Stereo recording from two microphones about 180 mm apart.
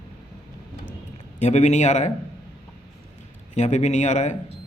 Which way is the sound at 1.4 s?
40° left (ahead or behind).